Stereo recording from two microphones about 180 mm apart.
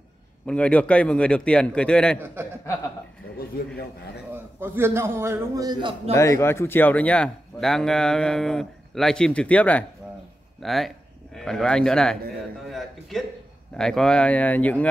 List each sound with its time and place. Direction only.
0.5 s speech: 5° left (ahead or behind)
3.3 s a man's voice: 60° left (ahead or behind)
4.6 s a man's voice: 15° right (ahead or behind)
6.1 s a man's voice: 15° left (ahead or behind)